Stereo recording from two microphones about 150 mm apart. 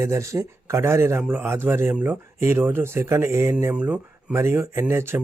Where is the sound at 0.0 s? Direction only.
20° right (ahead or behind).